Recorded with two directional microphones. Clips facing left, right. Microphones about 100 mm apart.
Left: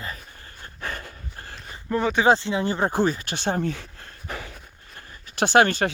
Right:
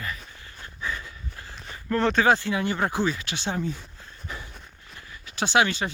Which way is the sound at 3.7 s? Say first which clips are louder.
Left 3 dB; 75° left (ahead or behind).